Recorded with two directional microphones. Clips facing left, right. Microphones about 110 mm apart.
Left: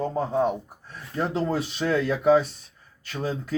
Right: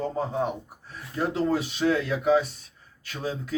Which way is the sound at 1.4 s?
45° left (ahead or behind).